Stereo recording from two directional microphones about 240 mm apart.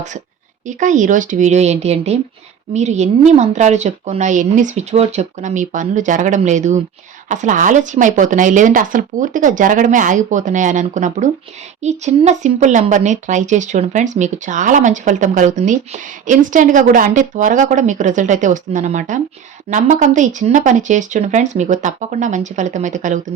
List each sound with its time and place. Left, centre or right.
0.7 s speech: right